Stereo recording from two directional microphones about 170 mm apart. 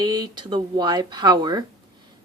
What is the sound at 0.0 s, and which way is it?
A woman's voice, 25° right (ahead or behind).